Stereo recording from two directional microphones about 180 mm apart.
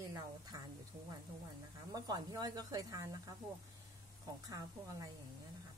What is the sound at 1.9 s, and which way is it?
A woman's voice, 20° right (ahead or behind).